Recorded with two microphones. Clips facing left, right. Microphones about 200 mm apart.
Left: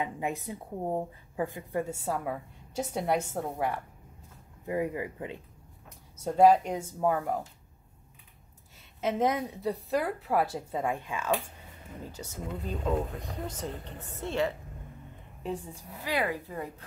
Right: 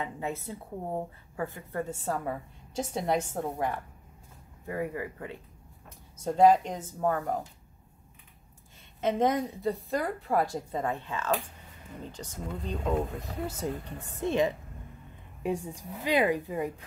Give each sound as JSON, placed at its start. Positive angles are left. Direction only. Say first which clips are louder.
{"t": 0.0, "sound": "a woman's voice", "louder": "left 2 dB", "side_deg": 15}
{"t": 4.6, "sound": "speech", "louder": "left 2 dB", "side_deg": 20}
{"t": 6.2, "sound": "a woman's voice", "louder": "even", "side_deg": 10}
{"t": 9.0, "sound": "a woman's voice", "louder": "right 2 dB", "side_deg": 5}
{"t": 13.2, "sound": "a woman's voice", "louder": "right 3 dB", "side_deg": -10}